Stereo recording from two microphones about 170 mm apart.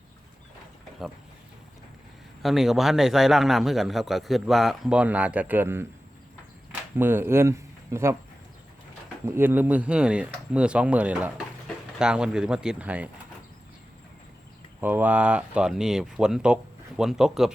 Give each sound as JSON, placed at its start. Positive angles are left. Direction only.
{"t": 2.4, "sound": "a man's voice", "side_deg": 0}
{"t": 6.9, "sound": "speech", "side_deg": -15}
{"t": 9.2, "sound": "a man's voice", "side_deg": -15}
{"t": 14.8, "sound": "a man's voice", "side_deg": -10}